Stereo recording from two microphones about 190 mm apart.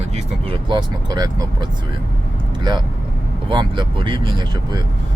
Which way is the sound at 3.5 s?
25° right (ahead or behind).